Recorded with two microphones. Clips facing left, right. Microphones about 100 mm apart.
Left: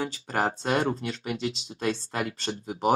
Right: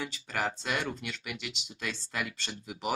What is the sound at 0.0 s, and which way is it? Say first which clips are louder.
Speech: left 6 dB; 40° left (ahead or behind).